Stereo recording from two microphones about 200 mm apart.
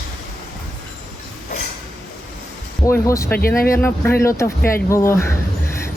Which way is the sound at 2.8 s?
15° left (ahead or behind).